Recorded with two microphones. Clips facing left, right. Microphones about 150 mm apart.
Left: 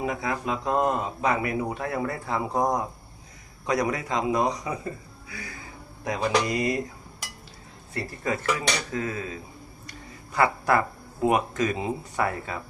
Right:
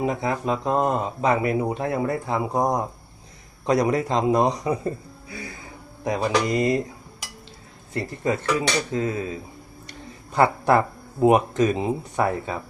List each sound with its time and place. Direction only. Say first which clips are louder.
0.0 s speech: right 4 dB; 25° right (ahead or behind)
3.7 s speech: right 5 dB; 25° right (ahead or behind)
7.9 s speech: right 4 dB; 25° right (ahead or behind)